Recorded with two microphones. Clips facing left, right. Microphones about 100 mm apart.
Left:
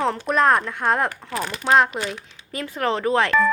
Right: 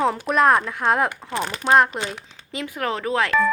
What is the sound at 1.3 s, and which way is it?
Speech, 25° right (ahead or behind).